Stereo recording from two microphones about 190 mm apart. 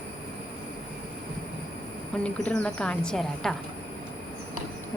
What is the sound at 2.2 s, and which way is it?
A woman's voice, 5° left (ahead or behind).